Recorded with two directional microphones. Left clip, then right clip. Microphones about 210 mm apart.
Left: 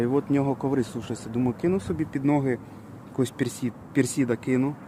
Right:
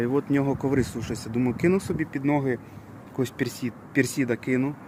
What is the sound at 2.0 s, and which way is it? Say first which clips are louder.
Speech: left 1 dB; 10° left (ahead or behind).